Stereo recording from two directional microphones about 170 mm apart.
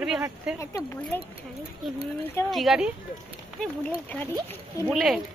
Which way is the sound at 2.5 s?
Centre (ahead or behind).